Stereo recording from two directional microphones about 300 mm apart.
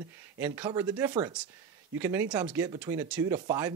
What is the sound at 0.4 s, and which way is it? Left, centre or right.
Speech, centre.